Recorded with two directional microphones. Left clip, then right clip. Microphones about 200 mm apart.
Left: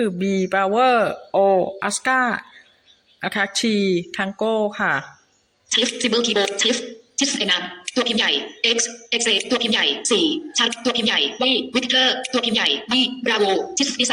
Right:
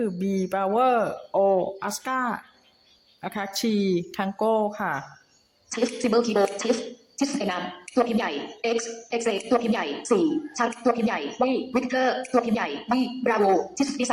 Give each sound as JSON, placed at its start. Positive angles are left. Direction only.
{"t": 0.0, "sound": "a man's voice", "side_deg": 5}